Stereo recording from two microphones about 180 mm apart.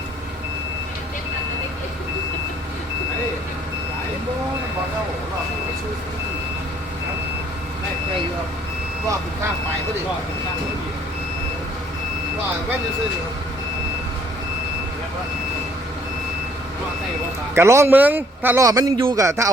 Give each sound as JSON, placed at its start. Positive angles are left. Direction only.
{"t": 17.5, "sound": "a man's voice", "side_deg": -15}